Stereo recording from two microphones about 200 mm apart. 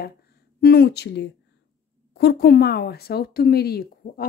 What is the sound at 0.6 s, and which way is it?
Speech, 50° left (ahead or behind).